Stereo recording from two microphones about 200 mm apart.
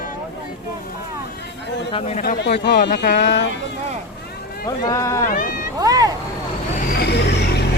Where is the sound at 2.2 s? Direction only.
55° left (ahead or behind).